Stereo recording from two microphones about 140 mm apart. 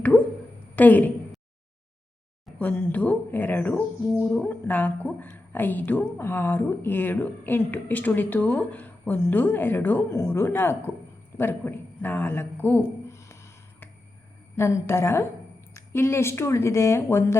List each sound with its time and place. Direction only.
0.8 s a woman's voice: 10° left (ahead or behind)
2.6 s a woman's voice: 10° left (ahead or behind)
11.3 s a sound: 15° left (ahead or behind)
14.5 s a woman's voice: 20° left (ahead or behind)